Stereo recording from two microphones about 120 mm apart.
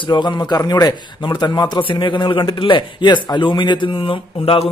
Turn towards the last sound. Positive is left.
turn(degrees=50)  # may be behind; listen again after turning